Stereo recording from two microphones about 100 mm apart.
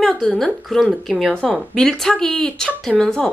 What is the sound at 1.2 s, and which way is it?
A woman's voice, 5° left (ahead or behind).